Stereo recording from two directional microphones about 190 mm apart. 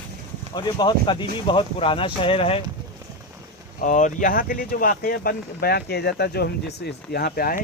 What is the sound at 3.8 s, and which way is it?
Speech, 40° left (ahead or behind).